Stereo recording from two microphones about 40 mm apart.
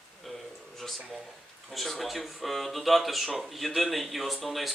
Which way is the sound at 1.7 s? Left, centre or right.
Centre.